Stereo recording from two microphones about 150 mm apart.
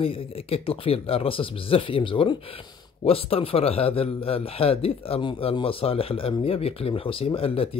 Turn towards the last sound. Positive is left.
turn(degrees=40)  # may be behind; listen again after turning